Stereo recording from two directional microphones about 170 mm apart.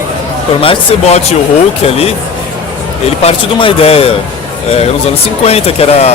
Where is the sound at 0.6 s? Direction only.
30° left (ahead or behind).